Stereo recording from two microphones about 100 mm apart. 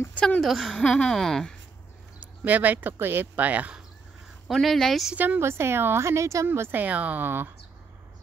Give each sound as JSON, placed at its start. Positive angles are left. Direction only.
{"t": 0.1, "sound": "a woman's voice", "side_deg": 15}
{"t": 0.4, "sound": "speech", "side_deg": 0}
{"t": 2.1, "sound": "speech", "side_deg": -15}
{"t": 4.5, "sound": "speech", "side_deg": 0}
{"t": 5.1, "sound": "speech", "side_deg": -15}